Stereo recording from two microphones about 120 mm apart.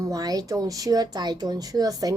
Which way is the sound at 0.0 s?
30° right (ahead or behind).